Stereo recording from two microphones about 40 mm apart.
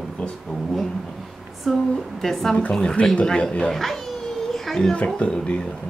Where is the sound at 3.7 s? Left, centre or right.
Centre.